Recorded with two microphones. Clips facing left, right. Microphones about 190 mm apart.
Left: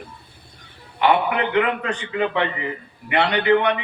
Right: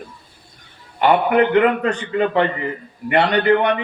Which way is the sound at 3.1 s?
45° right (ahead or behind).